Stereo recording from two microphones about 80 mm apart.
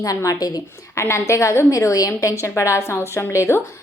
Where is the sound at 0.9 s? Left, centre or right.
Left.